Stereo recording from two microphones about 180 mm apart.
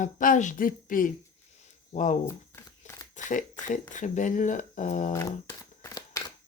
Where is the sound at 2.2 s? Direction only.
15° left (ahead or behind).